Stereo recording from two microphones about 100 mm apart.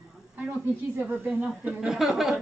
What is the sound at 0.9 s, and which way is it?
A woman's voice, 15° right (ahead or behind).